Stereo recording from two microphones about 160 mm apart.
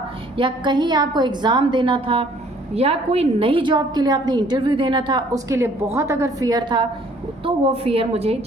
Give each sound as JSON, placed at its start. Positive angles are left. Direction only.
{"t": 0.3, "sound": "a woman's voice", "side_deg": -30}